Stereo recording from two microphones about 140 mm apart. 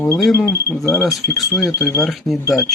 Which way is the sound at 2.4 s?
20° left (ahead or behind).